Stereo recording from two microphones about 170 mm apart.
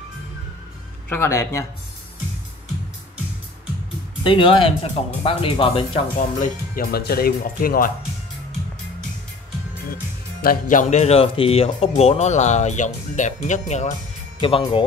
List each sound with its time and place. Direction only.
1.0 s speech: 15° left (ahead or behind)
4.2 s speech: 30° left (ahead or behind)
6.1 s speech: 60° left (ahead or behind)
10.4 s speech: 55° left (ahead or behind)
14.4 s speech: 30° left (ahead or behind)